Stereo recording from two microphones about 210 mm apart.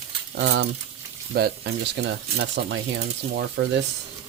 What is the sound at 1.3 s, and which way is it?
Cutlery, 50° right (ahead or behind).